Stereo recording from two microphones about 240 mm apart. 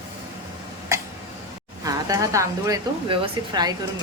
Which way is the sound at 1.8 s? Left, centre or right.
Centre.